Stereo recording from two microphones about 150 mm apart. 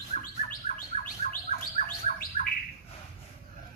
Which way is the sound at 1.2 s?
45° left (ahead or behind).